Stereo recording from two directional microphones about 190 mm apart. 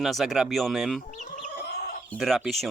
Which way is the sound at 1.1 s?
45° left (ahead or behind).